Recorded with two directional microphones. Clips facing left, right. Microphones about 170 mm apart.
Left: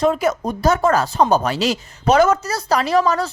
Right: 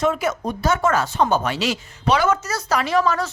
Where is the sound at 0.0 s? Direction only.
35° left (ahead or behind).